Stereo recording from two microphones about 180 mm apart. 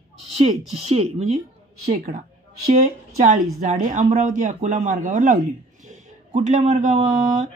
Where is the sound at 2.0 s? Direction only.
55° right (ahead or behind).